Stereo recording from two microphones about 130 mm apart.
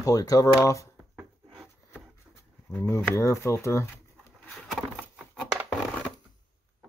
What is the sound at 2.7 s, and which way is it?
Speech, 20° left (ahead or behind).